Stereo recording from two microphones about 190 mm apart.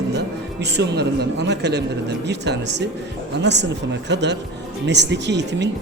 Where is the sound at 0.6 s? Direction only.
65° right (ahead or behind).